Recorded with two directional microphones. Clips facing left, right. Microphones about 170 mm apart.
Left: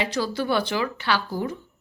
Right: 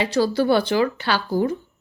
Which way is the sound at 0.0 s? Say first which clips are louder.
Right 6 dB; 35° right (ahead or behind).